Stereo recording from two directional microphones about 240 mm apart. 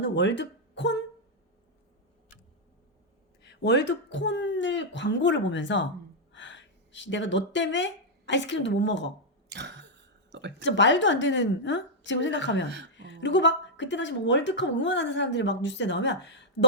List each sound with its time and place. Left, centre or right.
0.0 s speech: left
3.4 s speech: left
9.5 s a sound: right
10.6 s speech: left